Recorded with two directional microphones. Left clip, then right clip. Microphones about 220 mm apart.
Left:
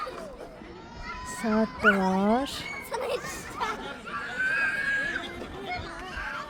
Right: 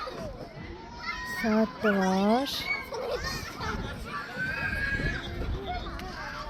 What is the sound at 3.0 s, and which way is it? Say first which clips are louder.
Children playing: left 1 dB; 30° left (ahead or behind).